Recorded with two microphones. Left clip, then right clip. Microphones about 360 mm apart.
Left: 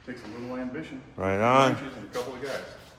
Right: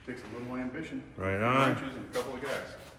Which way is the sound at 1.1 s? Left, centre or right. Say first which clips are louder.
Left 7 dB; centre.